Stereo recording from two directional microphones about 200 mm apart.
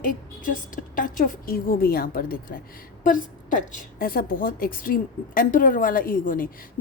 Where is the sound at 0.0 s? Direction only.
40° left (ahead or behind).